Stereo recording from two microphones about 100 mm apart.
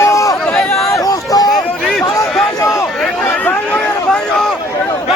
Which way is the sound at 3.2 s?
15° left (ahead or behind).